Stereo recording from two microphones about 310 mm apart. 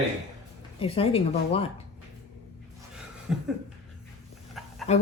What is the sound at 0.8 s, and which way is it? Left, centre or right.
Speech, centre.